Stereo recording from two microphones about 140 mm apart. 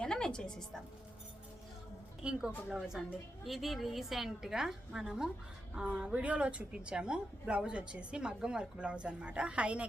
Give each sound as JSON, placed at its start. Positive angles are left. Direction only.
{"t": 0.0, "sound": "music", "side_deg": 5}
{"t": 2.2, "sound": "a woman's voice", "side_deg": -5}